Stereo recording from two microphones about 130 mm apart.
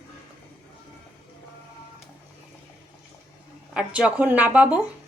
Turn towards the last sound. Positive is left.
turn(degrees=-10)  # may be behind; listen again after turning